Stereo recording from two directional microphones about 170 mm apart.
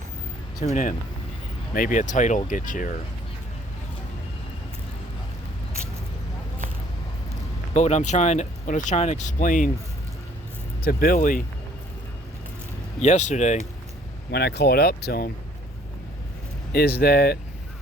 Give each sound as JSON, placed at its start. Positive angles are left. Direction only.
{"t": 0.6, "sound": "speech", "side_deg": 45}
{"t": 7.7, "sound": "speech", "side_deg": 45}
{"t": 10.8, "sound": "speech", "side_deg": 55}
{"t": 13.0, "sound": "speech", "side_deg": 45}
{"t": 14.3, "sound": "speech", "side_deg": 75}
{"t": 16.7, "sound": "speech", "side_deg": 65}